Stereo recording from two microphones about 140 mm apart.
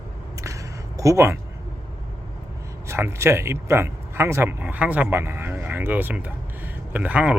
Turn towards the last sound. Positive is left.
turn(degrees=-10)  # may be behind; listen again after turning